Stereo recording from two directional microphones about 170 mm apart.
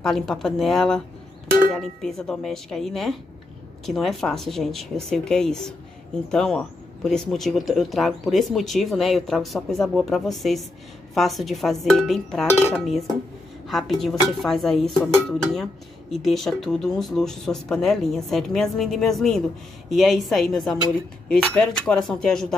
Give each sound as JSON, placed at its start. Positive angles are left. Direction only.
{"t": 0.0, "sound": "speech", "side_deg": 0}